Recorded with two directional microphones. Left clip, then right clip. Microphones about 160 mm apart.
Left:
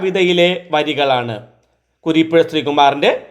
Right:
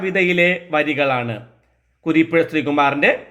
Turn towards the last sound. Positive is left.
turn(degrees=15)  # may be behind; listen again after turning